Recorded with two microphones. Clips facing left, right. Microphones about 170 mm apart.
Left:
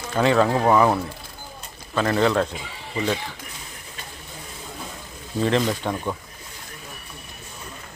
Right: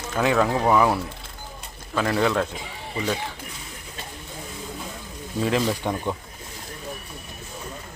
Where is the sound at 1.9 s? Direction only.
5° right (ahead or behind).